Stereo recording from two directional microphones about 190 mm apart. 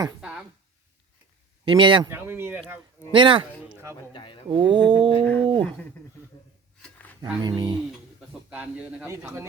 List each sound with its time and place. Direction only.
0.2 s a sound: 5° right (ahead or behind)
1.6 s cat: 25° right (ahead or behind)
2.0 s a man's voice: 10° right (ahead or behind)
3.1 s cat: 25° right (ahead or behind)
3.7 s a sound: 10° right (ahead or behind)
4.1 s speech: 25° left (ahead or behind)
4.4 s cat: 25° right (ahead or behind)
5.4 s speech: 25° right (ahead or behind)
6.8 s a sound: 10° left (ahead or behind)
7.2 s cat: 20° right (ahead or behind)
8.3 s a man's voice: 5° right (ahead or behind)